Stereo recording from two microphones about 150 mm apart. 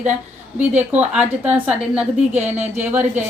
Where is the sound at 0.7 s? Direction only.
50° right (ahead or behind).